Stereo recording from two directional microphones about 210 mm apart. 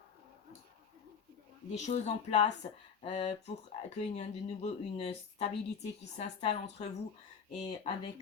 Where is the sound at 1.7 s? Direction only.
35° left (ahead or behind).